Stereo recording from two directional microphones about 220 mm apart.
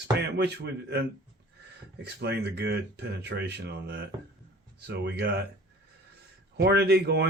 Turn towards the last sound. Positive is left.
turn(degrees=-45)  # may be behind; listen again after turning